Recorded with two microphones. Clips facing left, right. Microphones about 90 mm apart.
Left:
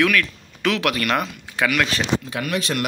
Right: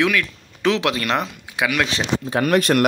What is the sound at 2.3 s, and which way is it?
Speech, 45° right (ahead or behind).